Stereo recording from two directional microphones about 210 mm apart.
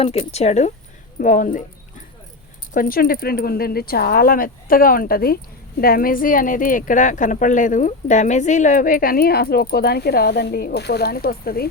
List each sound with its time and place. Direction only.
0.0 s speech: 30° left (ahead or behind)
2.7 s speech: 40° left (ahead or behind)